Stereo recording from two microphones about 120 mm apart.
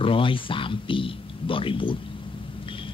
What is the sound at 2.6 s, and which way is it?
Vehicle, 45° left (ahead or behind).